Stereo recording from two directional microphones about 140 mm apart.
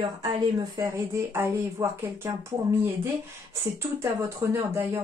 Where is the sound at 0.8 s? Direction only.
20° right (ahead or behind).